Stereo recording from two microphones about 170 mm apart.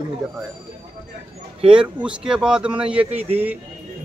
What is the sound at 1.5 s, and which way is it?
Speech, 30° right (ahead or behind).